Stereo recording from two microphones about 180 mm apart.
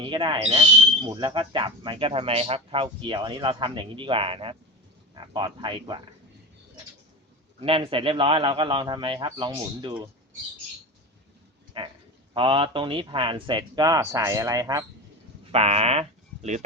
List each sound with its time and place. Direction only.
0.0 s speech: 25° right (ahead or behind)
7.6 s speech: 30° right (ahead or behind)
11.8 s speech: 30° right (ahead or behind)
15.5 s speech: 35° right (ahead or behind)